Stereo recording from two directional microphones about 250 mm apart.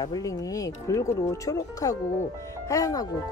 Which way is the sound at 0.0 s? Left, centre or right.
Centre.